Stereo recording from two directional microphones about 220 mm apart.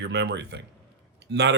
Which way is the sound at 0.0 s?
50° right (ahead or behind).